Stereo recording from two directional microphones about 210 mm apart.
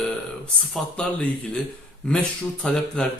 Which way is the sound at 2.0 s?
5° left (ahead or behind).